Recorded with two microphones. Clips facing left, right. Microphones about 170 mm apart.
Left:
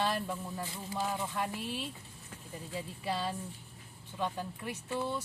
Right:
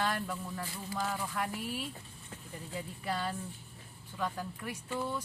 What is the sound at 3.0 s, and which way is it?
Speech, 25° left (ahead or behind).